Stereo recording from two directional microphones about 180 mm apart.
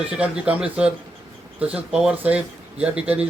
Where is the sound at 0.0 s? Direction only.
5° right (ahead or behind).